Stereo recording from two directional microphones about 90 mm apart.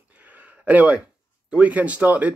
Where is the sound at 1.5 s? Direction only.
15° right (ahead or behind).